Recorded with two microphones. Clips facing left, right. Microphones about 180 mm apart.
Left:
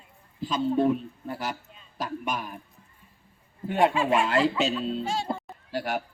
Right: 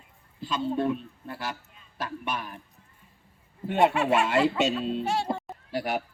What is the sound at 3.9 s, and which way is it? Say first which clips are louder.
Speech: even; 70° right (ahead or behind).